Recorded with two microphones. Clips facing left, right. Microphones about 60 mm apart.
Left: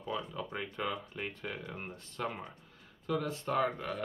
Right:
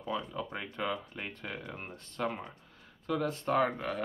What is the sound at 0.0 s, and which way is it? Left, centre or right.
Speech, centre.